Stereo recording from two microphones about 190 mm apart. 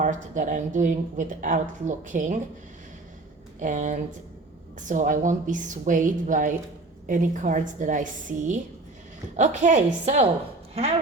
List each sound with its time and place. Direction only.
0.0 s a woman's voice: 40° right (ahead or behind)
3.6 s a woman's voice: 40° right (ahead or behind)